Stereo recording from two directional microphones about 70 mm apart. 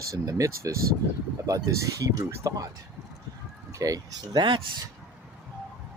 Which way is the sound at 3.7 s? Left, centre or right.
Right.